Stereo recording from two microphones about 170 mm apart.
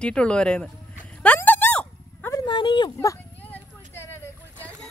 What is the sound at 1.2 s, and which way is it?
Dog, 10° left (ahead or behind).